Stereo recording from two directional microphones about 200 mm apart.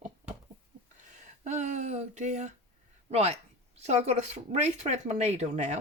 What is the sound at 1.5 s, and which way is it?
Speech, 35° right (ahead or behind).